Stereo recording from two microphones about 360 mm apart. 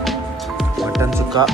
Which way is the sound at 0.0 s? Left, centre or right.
Centre.